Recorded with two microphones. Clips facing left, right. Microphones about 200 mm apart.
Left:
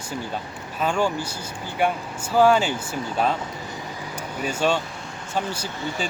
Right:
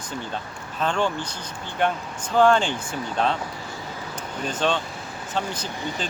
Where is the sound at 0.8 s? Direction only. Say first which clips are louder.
Left 1 dB; 10° left (ahead or behind).